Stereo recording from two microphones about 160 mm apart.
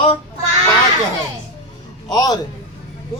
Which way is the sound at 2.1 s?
25° left (ahead or behind).